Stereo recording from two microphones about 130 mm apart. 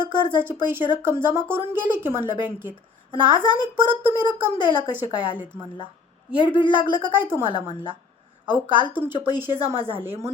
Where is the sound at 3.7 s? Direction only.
15° right (ahead or behind).